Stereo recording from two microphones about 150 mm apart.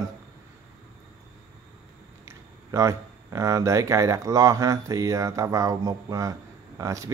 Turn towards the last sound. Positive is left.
turn(degrees=-20)  # may be behind; listen again after turning